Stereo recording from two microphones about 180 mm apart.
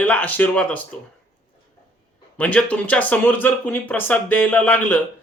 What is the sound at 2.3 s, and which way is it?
Speech, 10° left (ahead or behind).